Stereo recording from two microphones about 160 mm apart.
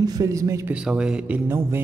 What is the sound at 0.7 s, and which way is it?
A man's voice, 5° right (ahead or behind).